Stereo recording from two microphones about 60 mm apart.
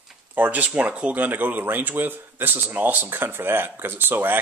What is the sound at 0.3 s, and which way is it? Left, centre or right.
Speech, right.